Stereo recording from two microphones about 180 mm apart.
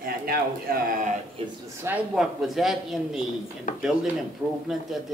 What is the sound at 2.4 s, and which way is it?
Speech, centre (ahead or behind).